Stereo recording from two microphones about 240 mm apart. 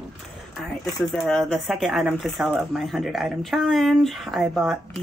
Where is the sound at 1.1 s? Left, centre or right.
Centre.